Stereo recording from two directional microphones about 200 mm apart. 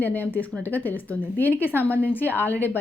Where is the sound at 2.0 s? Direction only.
10° left (ahead or behind).